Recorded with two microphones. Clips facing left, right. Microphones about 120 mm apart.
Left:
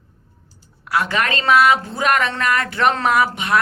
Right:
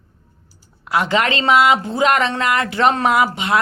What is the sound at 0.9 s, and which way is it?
A woman's voice, 20° right (ahead or behind).